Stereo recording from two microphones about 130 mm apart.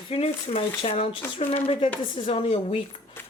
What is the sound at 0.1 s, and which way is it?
Speech, 50° left (ahead or behind).